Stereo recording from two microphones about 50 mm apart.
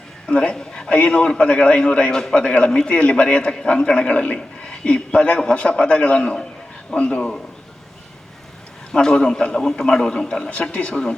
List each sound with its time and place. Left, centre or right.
0.3 s a man's voice: centre
8.9 s a man's voice: centre
10.5 s a man's voice: left